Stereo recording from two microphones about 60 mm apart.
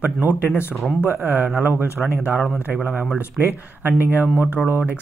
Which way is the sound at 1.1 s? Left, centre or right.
Right.